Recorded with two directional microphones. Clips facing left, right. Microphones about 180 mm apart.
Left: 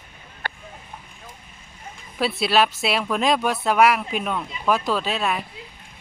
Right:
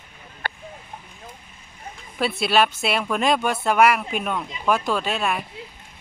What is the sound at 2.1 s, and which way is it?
Speech, centre (ahead or behind).